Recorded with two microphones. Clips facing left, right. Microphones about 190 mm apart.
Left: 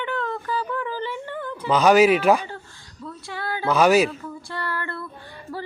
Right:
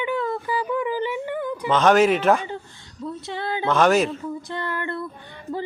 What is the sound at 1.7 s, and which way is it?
Speech, 5° left (ahead or behind).